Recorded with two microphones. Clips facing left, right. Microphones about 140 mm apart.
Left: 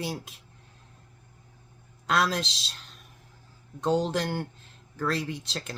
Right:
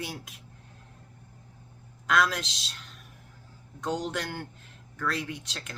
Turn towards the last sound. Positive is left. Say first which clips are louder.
# left 4 dB
turn(degrees=30)  # may be behind; listen again after turning